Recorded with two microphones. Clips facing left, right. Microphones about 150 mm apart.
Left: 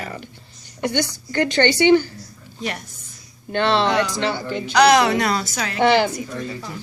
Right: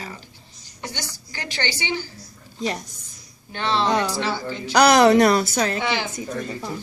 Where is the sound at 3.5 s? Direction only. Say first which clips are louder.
Left 3 dB; 65° left (ahead or behind).